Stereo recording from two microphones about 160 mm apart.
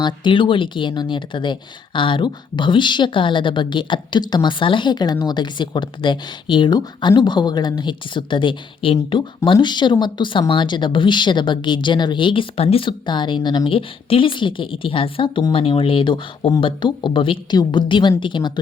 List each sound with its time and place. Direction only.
0.0 s speech: 30° left (ahead or behind)